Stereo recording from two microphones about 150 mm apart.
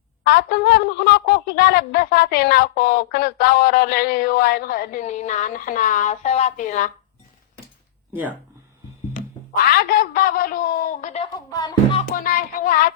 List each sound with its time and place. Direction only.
0.3 s a woman's voice: 90° left; by 6.9 s 55° left (ahead or behind)
8.1 s speech: 10° right (ahead or behind)
9.7 s speech: 75° left (ahead or behind); by 11.2 s 60° left (ahead or behind)
11.5 s music: 25° left (ahead or behind)
12.1 s speech: 70° left (ahead or behind)